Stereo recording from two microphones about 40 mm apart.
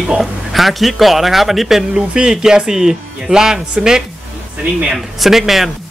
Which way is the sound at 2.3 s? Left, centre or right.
Centre.